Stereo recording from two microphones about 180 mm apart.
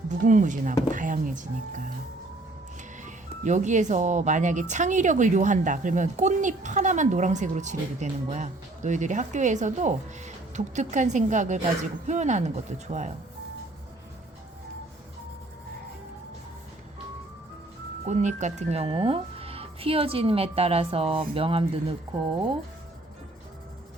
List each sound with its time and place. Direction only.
0.1 s speech: 45° right (ahead or behind)
3.0 s speech: 45° right (ahead or behind)
18.0 s speech: 40° right (ahead or behind)